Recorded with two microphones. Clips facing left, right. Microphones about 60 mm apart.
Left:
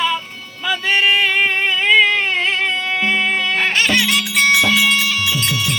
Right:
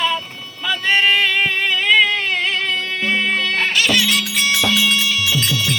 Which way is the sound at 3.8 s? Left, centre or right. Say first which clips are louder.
Left 1 dB; left.